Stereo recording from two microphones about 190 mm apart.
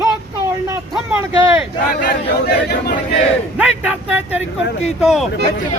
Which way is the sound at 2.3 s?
55° left (ahead or behind).